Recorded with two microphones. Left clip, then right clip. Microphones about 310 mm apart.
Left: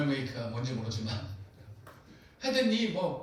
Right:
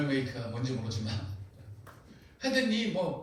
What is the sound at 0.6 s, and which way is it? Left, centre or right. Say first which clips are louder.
Speech: right 1 dB; right.